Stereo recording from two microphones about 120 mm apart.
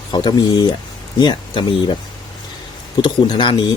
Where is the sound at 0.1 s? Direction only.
35° left (ahead or behind).